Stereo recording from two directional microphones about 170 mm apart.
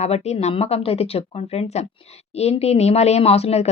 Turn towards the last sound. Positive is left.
turn(degrees=40)  # may be behind; listen again after turning